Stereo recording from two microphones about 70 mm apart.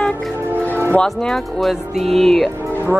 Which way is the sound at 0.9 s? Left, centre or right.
Centre.